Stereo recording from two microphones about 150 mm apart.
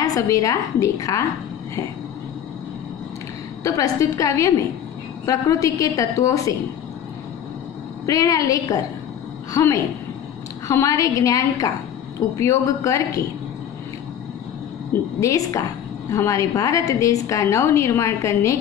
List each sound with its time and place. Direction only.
0.0 s a woman's voice: 25° left (ahead or behind)
3.6 s a woman's voice: 25° left (ahead or behind)
8.1 s a woman's voice: 20° left (ahead or behind)
15.1 s a woman's voice: 20° left (ahead or behind)